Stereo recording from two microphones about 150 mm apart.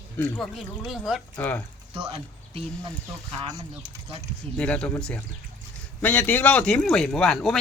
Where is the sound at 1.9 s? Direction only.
40° right (ahead or behind).